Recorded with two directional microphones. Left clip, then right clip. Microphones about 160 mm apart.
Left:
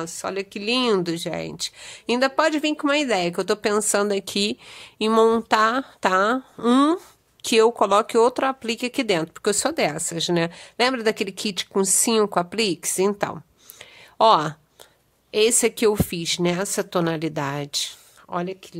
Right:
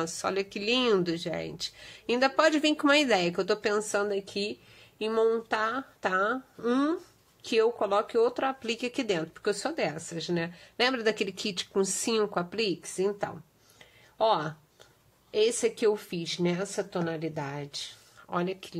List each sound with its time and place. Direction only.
0.0 s a woman's voice: 10° left (ahead or behind); by 17.9 s 50° left (ahead or behind)
18.3 s speech: 15° left (ahead or behind)